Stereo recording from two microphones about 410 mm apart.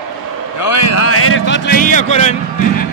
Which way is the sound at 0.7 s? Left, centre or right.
Left.